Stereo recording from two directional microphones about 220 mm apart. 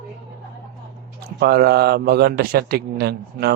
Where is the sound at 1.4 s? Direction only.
45° right (ahead or behind).